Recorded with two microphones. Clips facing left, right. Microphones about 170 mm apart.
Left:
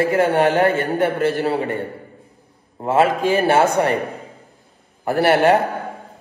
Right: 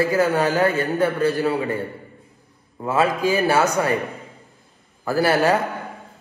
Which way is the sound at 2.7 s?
25° left (ahead or behind).